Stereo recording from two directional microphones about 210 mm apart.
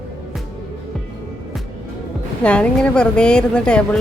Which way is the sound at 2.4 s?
5° left (ahead or behind).